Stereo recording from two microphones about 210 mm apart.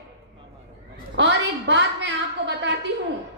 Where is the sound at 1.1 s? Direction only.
60° right (ahead or behind).